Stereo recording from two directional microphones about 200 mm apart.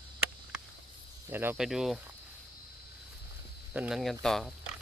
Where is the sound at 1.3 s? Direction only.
10° right (ahead or behind).